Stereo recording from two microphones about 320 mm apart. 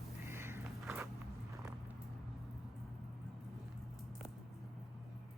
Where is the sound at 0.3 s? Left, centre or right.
Centre.